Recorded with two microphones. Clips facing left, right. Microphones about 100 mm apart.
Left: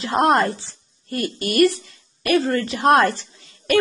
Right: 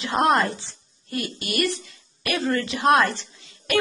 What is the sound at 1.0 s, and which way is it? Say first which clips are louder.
A woman's voice: left 5 dB; 45° left (ahead or behind).